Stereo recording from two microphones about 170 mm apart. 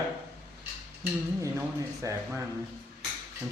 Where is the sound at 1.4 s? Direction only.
20° right (ahead or behind).